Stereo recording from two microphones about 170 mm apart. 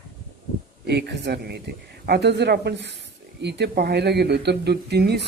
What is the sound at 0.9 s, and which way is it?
Speech, 80° right.